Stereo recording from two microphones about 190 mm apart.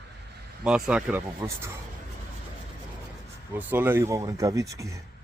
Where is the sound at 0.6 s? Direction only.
5° right (ahead or behind).